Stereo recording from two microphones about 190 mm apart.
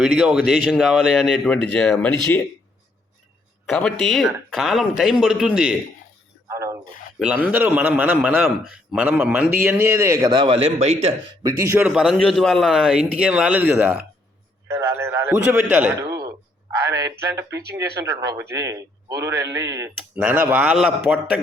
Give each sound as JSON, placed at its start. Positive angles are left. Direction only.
{"t": 0.0, "sound": "a man's voice", "side_deg": 0}
{"t": 3.7, "sound": "a man's voice", "side_deg": 5}
{"t": 6.5, "sound": "a sound", "side_deg": -15}
{"t": 7.2, "sound": "speech", "side_deg": -10}
{"t": 11.4, "sound": "a man's voice", "side_deg": -15}
{"t": 16.0, "sound": "a sound", "side_deg": -20}
{"t": 17.3, "sound": "speech", "side_deg": -15}